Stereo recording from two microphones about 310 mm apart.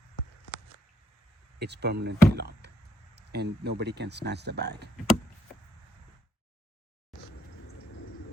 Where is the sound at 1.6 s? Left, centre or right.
Right.